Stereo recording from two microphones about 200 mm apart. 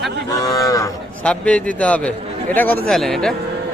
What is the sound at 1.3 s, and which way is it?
Speech, 5° left (ahead or behind).